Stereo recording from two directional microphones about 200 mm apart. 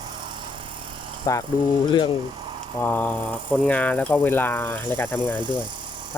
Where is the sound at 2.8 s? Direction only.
10° left (ahead or behind).